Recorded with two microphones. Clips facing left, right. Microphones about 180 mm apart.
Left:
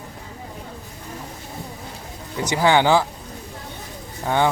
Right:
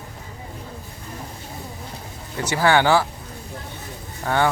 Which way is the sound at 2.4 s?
15° left (ahead or behind).